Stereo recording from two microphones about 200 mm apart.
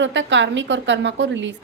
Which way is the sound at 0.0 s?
65° right (ahead or behind).